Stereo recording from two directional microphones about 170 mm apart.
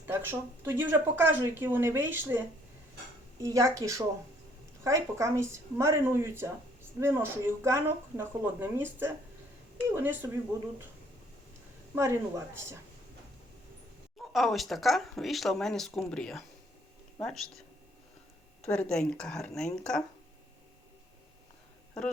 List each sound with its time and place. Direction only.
0.0 s speech: 15° right (ahead or behind)
3.4 s a woman's voice: 20° right (ahead or behind)
11.9 s speech: 15° right (ahead or behind)
14.2 s speech: centre (ahead or behind)
18.6 s speech: 5° left (ahead or behind)